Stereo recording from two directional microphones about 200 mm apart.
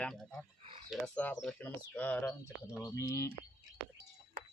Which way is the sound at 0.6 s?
30° right (ahead or behind).